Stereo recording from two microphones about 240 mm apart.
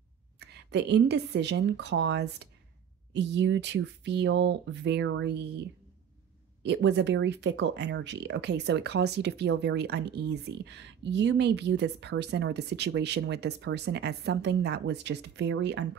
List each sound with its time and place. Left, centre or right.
0.4 s speech: right
6.6 s speech: right